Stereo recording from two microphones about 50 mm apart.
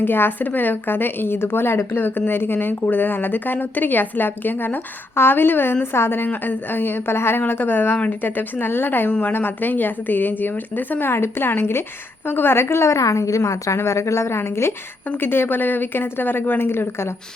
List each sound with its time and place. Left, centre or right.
0.0 s a woman's voice: left
1.9 s a woman's voice: left
11.1 s a woman's voice: left
14.3 s speech: left
15.2 s a woman's voice: left